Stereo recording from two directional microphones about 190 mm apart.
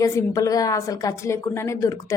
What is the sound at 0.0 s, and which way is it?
A woman's voice, 15° left (ahead or behind).